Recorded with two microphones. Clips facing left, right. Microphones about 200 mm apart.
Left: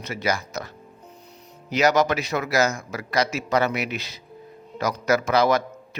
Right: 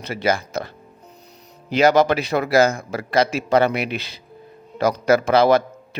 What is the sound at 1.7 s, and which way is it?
A man's voice, 30° right (ahead or behind).